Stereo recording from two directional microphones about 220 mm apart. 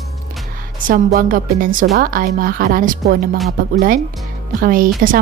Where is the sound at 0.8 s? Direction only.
40° right (ahead or behind).